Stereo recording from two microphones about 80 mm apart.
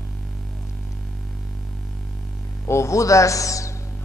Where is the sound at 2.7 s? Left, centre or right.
Left.